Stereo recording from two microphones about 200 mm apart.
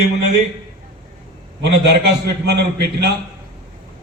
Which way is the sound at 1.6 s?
55° right (ahead or behind).